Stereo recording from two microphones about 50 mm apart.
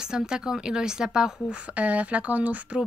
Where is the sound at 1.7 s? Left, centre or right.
Right.